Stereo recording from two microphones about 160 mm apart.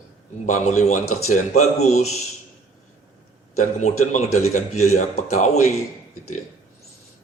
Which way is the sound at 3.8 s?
45° left (ahead or behind).